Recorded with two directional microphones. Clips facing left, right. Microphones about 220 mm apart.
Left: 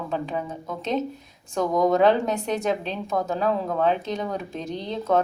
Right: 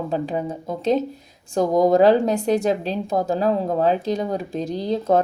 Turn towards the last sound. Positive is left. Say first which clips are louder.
# right 5 dB
turn(degrees=-35)  # may be behind; listen again after turning